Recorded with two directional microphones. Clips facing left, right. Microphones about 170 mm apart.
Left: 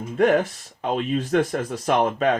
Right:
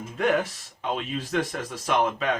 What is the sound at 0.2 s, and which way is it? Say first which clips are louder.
Speech: left 5 dB; 45° left (ahead or behind).